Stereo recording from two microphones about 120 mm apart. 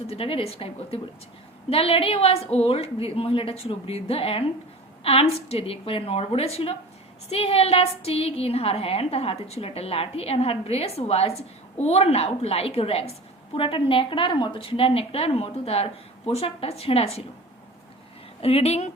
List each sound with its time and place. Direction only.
0.1 s a woman's voice: 50° left (ahead or behind)
18.4 s a woman's voice: 60° left (ahead or behind)